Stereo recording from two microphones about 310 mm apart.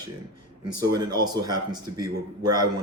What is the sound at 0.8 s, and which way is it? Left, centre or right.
A man's voice, centre.